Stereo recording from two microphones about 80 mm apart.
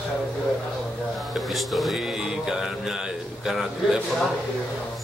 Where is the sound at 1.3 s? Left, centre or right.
Centre.